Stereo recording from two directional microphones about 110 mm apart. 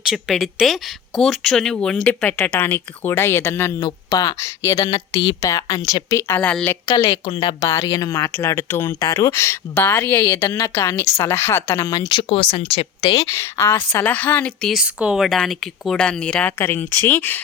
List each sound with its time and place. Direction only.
0.1 s a woman's voice: centre (ahead or behind); by 3.8 s 20° left (ahead or behind)
3.8 s a woman's voice: 35° left (ahead or behind); by 6.5 s 20° left (ahead or behind)
6.5 s speech: 10° left (ahead or behind)
6.8 s a woman's voice: 30° left (ahead or behind)
7.3 s speech: 50° left (ahead or behind)
7.6 s a woman's voice: 30° left (ahead or behind)
8.3 s a woman's voice: 20° left (ahead or behind)
9.0 s a woman's voice: 30° left (ahead or behind)
11.9 s a woman's voice: 40° left (ahead or behind)
12.3 s speech: 70° left (ahead or behind)
13.0 s speech: 45° left (ahead or behind)
13.2 s speech: 25° left (ahead or behind)
14.7 s a woman's voice: 10° right (ahead or behind); by 17.4 s 20° left (ahead or behind)